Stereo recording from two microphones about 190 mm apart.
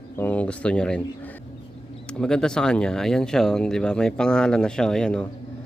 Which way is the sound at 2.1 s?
5° left (ahead or behind).